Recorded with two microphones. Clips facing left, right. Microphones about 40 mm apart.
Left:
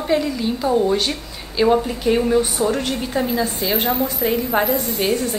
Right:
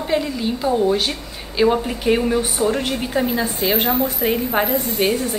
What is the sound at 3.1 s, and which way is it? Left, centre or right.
A woman's voice, centre.